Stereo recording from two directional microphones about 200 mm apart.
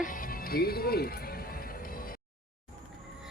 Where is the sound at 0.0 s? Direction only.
45° left (ahead or behind).